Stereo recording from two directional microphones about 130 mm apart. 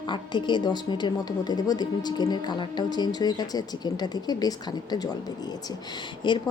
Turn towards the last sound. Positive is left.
turn(degrees=35)  # may be behind; listen again after turning